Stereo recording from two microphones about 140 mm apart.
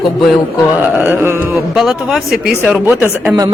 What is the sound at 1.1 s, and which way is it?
Speech, 15° right (ahead or behind).